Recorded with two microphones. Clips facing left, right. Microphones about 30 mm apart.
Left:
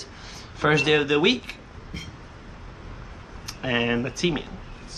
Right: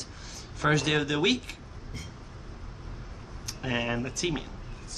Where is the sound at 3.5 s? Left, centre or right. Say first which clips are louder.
Left 6 dB; left.